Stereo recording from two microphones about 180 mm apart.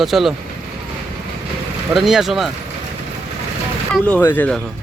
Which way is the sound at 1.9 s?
Centre (ahead or behind).